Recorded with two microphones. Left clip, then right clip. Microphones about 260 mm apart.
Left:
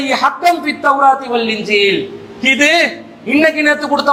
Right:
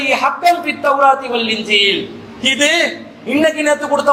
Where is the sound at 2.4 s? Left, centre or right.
Left.